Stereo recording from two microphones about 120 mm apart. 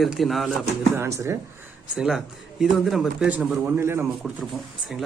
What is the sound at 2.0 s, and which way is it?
A man's voice, 5° right (ahead or behind).